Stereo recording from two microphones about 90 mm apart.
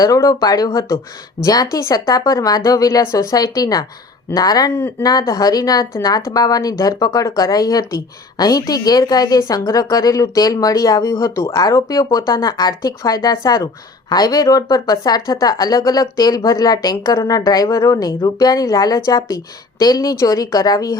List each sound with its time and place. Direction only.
0.0 s a woman's voice: 40° left (ahead or behind)
4.7 s speech: 25° left (ahead or behind)
5.0 s a woman's voice: 45° left (ahead or behind)